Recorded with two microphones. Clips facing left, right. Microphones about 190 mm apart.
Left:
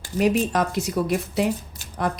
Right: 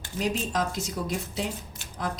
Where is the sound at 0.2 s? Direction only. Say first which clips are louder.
Left 7 dB; 65° left (ahead or behind).